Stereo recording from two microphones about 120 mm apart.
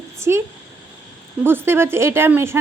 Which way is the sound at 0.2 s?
25° right (ahead or behind).